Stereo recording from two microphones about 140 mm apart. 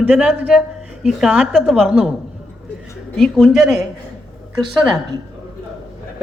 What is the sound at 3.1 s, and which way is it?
Speech, centre (ahead or behind).